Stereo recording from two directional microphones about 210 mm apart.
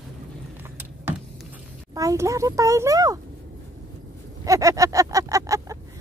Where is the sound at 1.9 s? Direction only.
15° right (ahead or behind).